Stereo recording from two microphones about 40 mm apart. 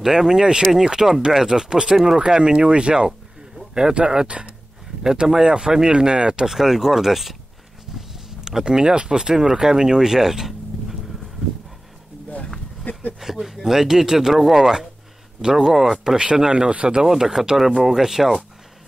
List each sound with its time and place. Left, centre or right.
0.0 s speech: centre
0.8 s speech: centre
8.5 s speech: centre
12.9 s a sound: left
13.2 s speech: centre
16.2 s speech: right
17.0 s speech: centre